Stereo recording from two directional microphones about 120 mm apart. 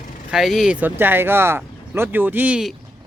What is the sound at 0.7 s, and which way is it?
Speech, 15° right (ahead or behind).